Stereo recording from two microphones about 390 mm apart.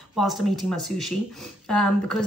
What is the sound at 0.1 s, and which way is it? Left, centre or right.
Speech, centre.